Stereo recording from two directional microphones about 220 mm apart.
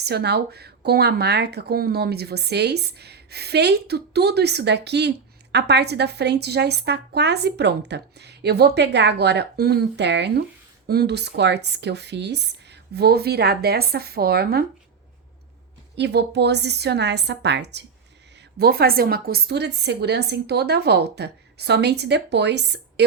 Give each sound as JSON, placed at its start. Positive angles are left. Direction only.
{"t": 0.0, "sound": "speech", "side_deg": -50}
{"t": 16.0, "sound": "speech", "side_deg": -50}